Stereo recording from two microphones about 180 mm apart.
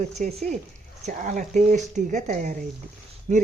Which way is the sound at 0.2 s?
45° right (ahead or behind).